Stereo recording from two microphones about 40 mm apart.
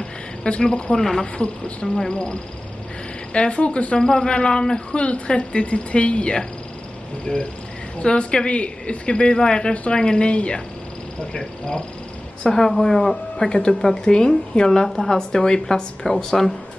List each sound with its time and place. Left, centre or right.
0.0 s frog: left
0.9 s speech: centre
1.2 s speech: left
2.0 s speech: centre
3.3 s speech: left
4.0 s speech: centre
12.4 s speech: centre
13.5 s speech: centre